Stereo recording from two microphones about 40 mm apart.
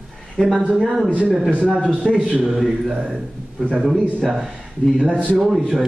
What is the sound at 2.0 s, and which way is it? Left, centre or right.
Speech, left.